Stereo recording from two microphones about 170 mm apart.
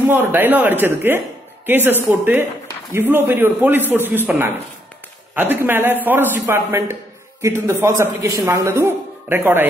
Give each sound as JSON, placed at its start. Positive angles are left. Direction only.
{"t": 0.1, "sound": "a woman's voice", "side_deg": -10}